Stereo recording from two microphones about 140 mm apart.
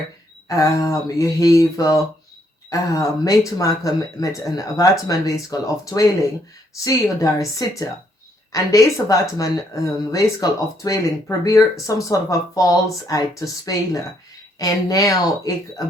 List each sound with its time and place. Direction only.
0.4 s speech: 25° left (ahead or behind)